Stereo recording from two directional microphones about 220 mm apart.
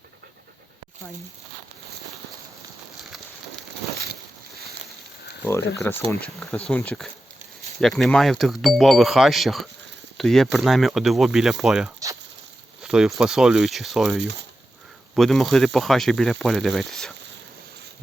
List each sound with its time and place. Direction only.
5.9 s speech: 10° left (ahead or behind)
14.2 s speech: 55° right (ahead or behind)
15.1 s speech: centre (ahead or behind)